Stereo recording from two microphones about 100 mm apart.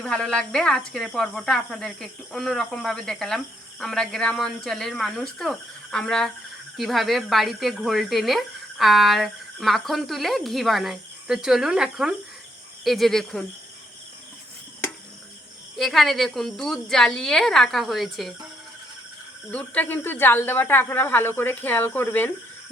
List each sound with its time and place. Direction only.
0.0 s speech: 10° left (ahead or behind)
15.7 s speech: centre (ahead or behind)
19.5 s speech: 15° left (ahead or behind)